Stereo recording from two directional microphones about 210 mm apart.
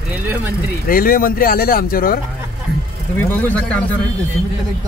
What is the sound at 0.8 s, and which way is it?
Speech, 45° left (ahead or behind).